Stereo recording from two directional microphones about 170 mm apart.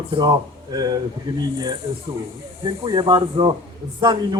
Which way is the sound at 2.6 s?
25° right (ahead or behind).